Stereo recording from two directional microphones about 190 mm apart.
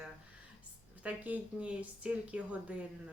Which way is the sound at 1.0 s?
5° right (ahead or behind).